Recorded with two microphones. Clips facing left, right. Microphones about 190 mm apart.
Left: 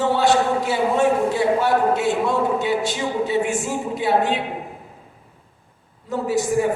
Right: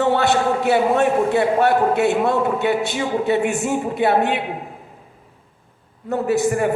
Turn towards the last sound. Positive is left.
turn(degrees=-60)  # may be behind; listen again after turning